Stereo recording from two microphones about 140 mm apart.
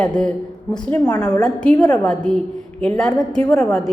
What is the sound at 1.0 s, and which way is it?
Speech, 25° left (ahead or behind).